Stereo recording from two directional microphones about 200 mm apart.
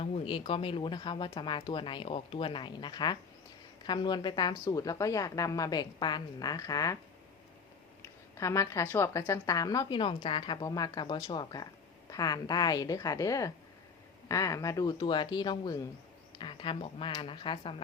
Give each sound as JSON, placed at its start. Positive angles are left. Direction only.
{"t": 0.0, "sound": "a woman's voice", "side_deg": 25}
{"t": 8.4, "sound": "a woman's voice", "side_deg": 15}